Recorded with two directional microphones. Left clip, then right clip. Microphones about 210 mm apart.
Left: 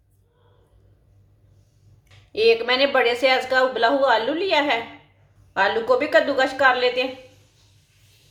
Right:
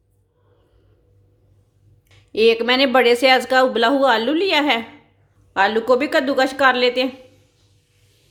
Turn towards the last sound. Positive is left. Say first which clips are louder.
# right 2 dB
turn(degrees=-45)  # may be behind; listen again after turning